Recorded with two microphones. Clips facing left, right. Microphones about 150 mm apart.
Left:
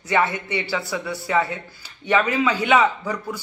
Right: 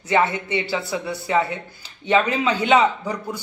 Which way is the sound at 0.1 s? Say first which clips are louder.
Right 2 dB; 20° right (ahead or behind).